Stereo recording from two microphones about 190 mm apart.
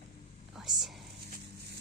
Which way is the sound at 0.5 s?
Centre (ahead or behind).